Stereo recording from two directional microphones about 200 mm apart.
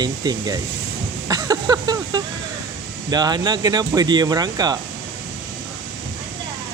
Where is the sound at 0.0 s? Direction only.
20° right (ahead or behind).